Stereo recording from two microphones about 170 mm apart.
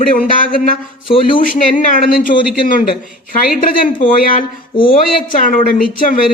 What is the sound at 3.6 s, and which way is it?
Speech, 50° left (ahead or behind).